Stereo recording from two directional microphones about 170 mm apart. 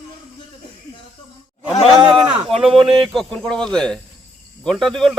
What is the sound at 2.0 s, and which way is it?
Speech, 30° right (ahead or behind).